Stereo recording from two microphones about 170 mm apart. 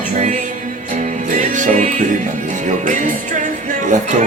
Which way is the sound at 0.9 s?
45° right (ahead or behind).